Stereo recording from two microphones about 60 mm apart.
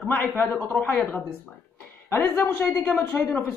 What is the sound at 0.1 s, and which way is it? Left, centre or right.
Speech, left.